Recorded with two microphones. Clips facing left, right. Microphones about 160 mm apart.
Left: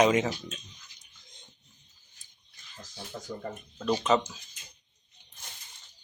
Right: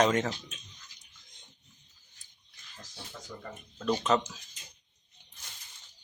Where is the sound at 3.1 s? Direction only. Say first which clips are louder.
Left 7 dB; 40° left (ahead or behind).